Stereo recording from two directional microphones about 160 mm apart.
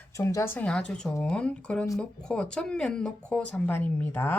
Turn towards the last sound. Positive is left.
turn(degrees=10)  # may be behind; listen again after turning